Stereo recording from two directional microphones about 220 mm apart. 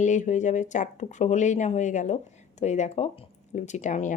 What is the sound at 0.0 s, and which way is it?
A woman's voice, 35° left (ahead or behind).